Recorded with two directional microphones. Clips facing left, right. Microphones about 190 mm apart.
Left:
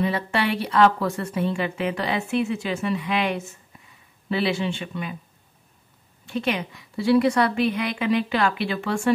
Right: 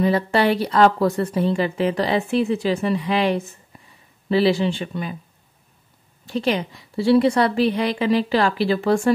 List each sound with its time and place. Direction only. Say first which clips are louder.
0.0 s a woman's voice: right 6 dB; 40° right (ahead or behind)
6.2 s a woman's voice: right 4 dB; 35° right (ahead or behind)